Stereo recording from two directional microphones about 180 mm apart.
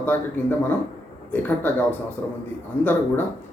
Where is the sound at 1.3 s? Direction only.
10° left (ahead or behind).